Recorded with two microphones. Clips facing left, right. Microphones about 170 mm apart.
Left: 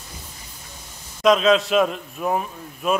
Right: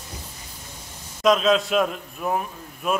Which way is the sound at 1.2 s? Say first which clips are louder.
Left 2 dB; centre (ahead or behind).